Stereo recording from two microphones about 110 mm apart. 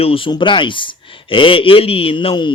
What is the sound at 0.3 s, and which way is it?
A man's voice, 45° left (ahead or behind).